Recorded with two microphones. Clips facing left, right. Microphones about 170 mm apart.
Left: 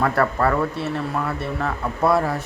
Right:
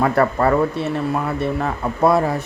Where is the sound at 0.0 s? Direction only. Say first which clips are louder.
Right 3 dB; 20° right (ahead or behind).